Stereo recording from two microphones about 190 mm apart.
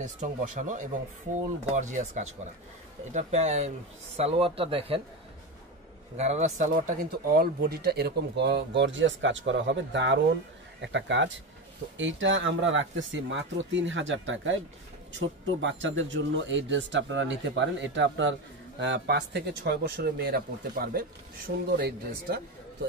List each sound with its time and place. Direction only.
0.0 s speech: 40° right (ahead or behind)
6.1 s speech: 35° right (ahead or behind); by 22.4 s 55° right (ahead or behind)